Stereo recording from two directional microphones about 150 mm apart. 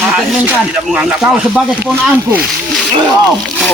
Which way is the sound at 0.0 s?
5° right (ahead or behind).